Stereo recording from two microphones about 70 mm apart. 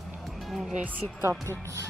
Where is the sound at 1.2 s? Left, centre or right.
Right.